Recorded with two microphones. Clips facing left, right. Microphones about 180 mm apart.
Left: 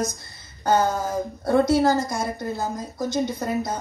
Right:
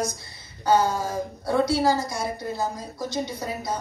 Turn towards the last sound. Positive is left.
turn(degrees=50)  # may be behind; listen again after turning